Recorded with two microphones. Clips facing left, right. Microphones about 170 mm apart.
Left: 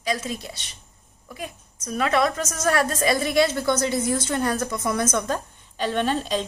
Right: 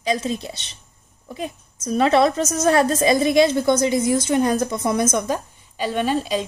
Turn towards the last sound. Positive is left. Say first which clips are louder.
# right 2 dB
turn(degrees=-5)  # may be behind; listen again after turning